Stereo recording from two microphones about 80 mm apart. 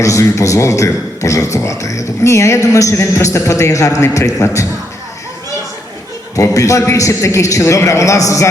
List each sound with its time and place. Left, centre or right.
0.0 s a man's voice: left
6.3 s a man's voice: left